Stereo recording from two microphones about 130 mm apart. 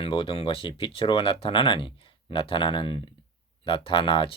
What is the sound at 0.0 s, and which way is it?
Speech, 45° left (ahead or behind).